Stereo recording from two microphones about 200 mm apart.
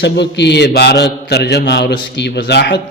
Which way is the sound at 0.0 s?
60° left (ahead or behind).